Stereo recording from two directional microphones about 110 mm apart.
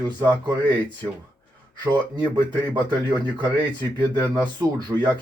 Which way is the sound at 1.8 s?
40° right (ahead or behind).